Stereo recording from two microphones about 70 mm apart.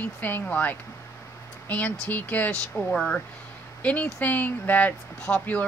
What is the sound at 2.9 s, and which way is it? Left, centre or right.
Speech, centre.